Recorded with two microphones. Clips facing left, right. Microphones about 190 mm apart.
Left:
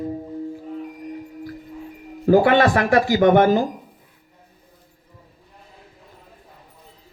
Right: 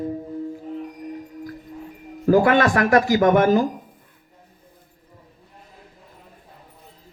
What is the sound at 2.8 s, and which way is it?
Speech, 45° right (ahead or behind).